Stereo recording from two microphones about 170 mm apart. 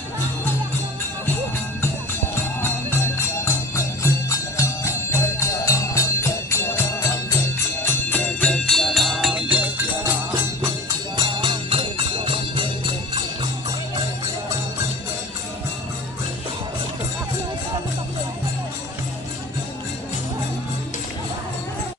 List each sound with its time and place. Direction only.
2.6 s music: 15° left (ahead or behind); by 9.7 s 5° right (ahead or behind)
11.1 s music: 30° right (ahead or behind)